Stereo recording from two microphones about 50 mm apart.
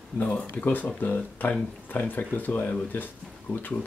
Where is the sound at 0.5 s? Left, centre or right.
Left.